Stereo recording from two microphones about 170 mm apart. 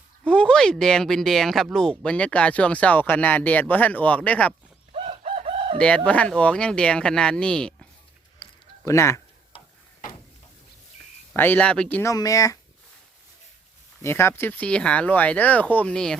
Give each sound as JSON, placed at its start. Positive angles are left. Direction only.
{"t": 0.3, "sound": "speech", "side_deg": 5}
{"t": 4.9, "sound": "chicken", "side_deg": -35}
{"t": 6.1, "sound": "speech", "side_deg": 5}
{"t": 8.8, "sound": "speech", "side_deg": 15}
{"t": 11.3, "sound": "speech", "side_deg": 10}
{"t": 12.1, "sound": "speech", "side_deg": 20}
{"t": 14.0, "sound": "speech", "side_deg": 15}